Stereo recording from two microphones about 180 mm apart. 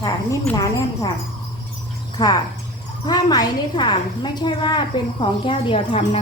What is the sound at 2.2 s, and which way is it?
A woman's voice, 25° left (ahead or behind).